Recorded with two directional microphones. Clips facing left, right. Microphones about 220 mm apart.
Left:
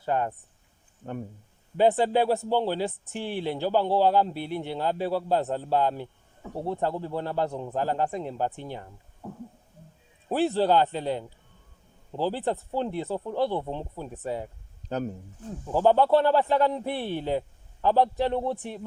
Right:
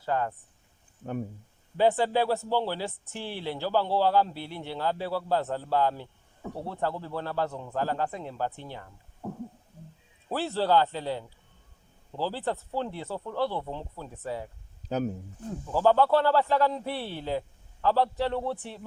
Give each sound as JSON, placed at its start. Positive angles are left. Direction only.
{"t": 0.0, "sound": "speech", "side_deg": 20}
{"t": 1.8, "sound": "a man's voice", "side_deg": 20}
{"t": 10.2, "sound": "a man's voice", "side_deg": 20}
{"t": 14.8, "sound": "speech", "side_deg": -5}
{"t": 15.7, "sound": "a man's voice", "side_deg": 20}